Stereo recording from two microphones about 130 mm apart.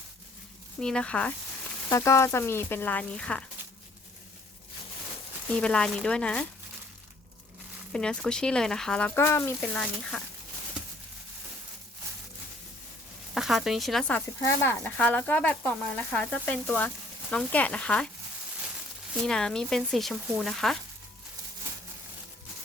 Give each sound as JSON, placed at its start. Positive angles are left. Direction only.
{"t": 0.8, "sound": "speech", "side_deg": 5}
{"t": 1.9, "sound": "speech", "side_deg": 20}
{"t": 5.5, "sound": "speech", "side_deg": 5}
{"t": 7.9, "sound": "speech", "side_deg": 5}
{"t": 9.1, "sound": "speech", "side_deg": 20}
{"t": 10.1, "sound": "speech", "side_deg": -5}
{"t": 13.3, "sound": "speech", "side_deg": 0}
{"t": 19.2, "sound": "speech", "side_deg": 5}